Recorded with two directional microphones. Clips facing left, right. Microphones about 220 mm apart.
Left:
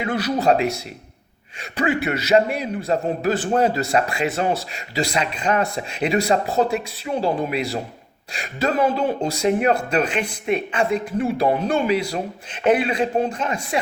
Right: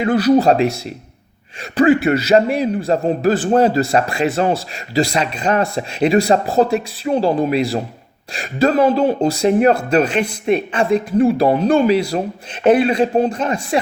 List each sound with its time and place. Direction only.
0.0 s a man's voice: 35° right (ahead or behind)
1.7 s a man's voice: 35° right (ahead or behind)